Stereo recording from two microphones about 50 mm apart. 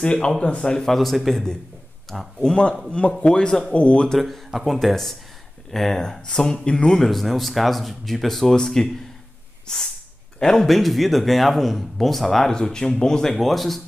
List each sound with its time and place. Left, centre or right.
0.0 s speech: centre
2.4 s speech: centre
4.5 s speech: centre
13.4 s speech: centre